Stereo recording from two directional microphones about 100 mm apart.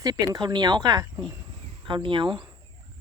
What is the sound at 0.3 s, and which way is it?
Speech, 45° right (ahead or behind).